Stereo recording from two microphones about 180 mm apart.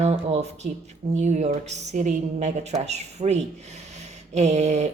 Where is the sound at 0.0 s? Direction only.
35° right (ahead or behind).